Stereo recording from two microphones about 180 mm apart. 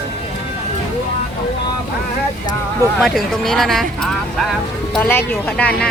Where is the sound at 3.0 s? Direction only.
Centre (ahead or behind).